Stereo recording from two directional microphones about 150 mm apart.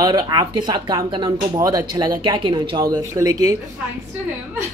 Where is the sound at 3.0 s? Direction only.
20° right (ahead or behind).